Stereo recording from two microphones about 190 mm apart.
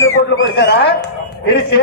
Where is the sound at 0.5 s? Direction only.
60° left (ahead or behind).